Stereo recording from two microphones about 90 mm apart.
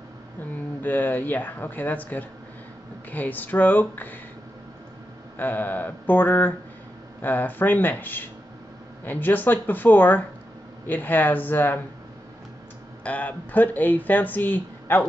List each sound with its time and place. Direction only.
0.4 s speech: 20° left (ahead or behind)
5.4 s speech: 20° left (ahead or behind)
13.0 s speech: 15° left (ahead or behind)